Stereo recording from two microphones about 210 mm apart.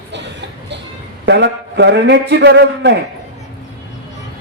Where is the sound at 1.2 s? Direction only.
55° right (ahead or behind).